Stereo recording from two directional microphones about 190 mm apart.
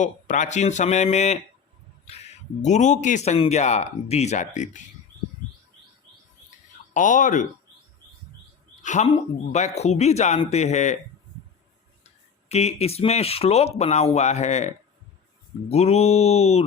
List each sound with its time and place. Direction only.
0.0 s speech: 40° left (ahead or behind)
6.9 s speech: 45° left (ahead or behind)
8.8 s speech: 40° left (ahead or behind)
12.5 s speech: 35° left (ahead or behind)